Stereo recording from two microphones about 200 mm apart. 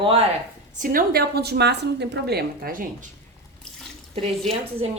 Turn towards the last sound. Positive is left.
turn(degrees=-30)  # may be behind; listen again after turning